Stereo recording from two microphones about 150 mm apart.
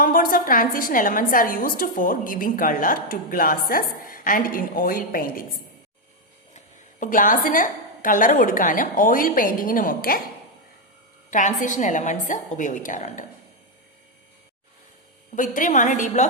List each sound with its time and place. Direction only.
0.0 s a woman's voice: 70° left (ahead or behind)
6.5 s a woman's voice: 55° left (ahead or behind)
11.3 s a woman's voice: 55° left (ahead or behind)
15.4 s a woman's voice: 60° left (ahead or behind)